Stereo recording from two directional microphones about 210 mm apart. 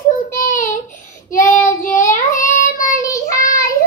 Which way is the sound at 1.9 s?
10° left (ahead or behind).